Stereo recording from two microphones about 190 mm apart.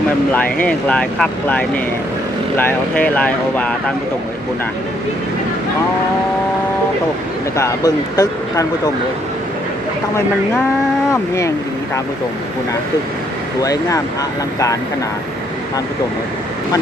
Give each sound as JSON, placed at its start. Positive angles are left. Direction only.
{"t": 0.3, "sound": "speech", "side_deg": 5}
{"t": 7.5, "sound": "speech", "side_deg": 15}
{"t": 11.1, "sound": "speech", "side_deg": 15}
{"t": 13.6, "sound": "speech", "side_deg": 20}